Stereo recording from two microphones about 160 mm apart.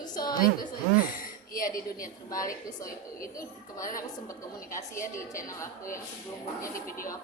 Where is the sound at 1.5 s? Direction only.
60° left (ahead or behind).